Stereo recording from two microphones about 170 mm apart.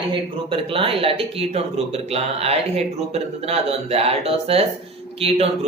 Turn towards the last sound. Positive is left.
turn(degrees=-35)  # may be behind; listen again after turning